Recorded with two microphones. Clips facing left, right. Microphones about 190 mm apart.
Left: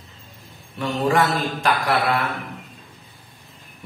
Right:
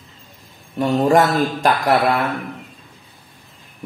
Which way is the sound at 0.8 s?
45° right (ahead or behind).